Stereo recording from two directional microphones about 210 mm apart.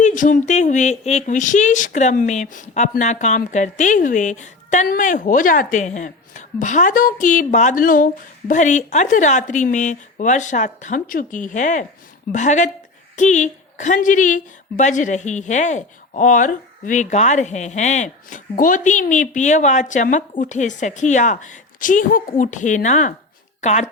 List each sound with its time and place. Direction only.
0.0 s speech: 40° left (ahead or behind)